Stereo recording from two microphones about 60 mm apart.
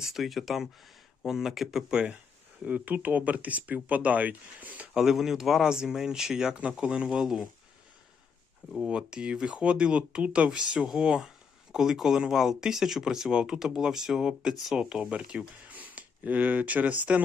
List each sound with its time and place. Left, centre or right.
0.0 s speech: centre
2.6 s speech: right
4.9 s speech: centre
8.9 s speech: centre